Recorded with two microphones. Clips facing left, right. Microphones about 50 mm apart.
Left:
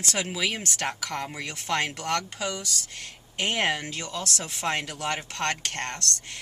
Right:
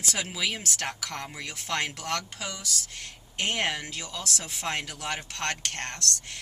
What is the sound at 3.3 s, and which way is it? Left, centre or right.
Speech, centre.